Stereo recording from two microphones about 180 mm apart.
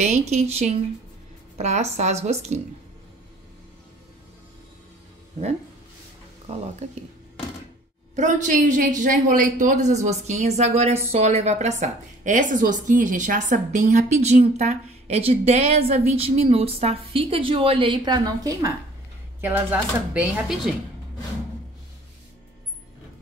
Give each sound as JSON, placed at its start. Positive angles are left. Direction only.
{"t": 0.0, "sound": "a woman's voice", "side_deg": -40}
{"t": 8.2, "sound": "a woman's voice", "side_deg": -45}